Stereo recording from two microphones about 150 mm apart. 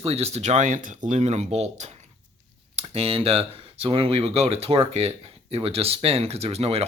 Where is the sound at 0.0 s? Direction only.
45° right (ahead or behind).